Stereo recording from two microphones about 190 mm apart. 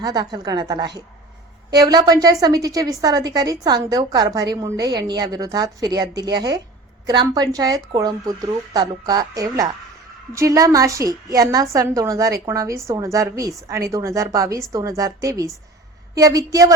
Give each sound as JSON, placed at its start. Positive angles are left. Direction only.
{"t": 0.0, "sound": "a woman's voice", "side_deg": -20}